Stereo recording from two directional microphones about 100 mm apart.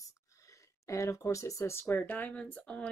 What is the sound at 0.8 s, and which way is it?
Speech, 30° left (ahead or behind).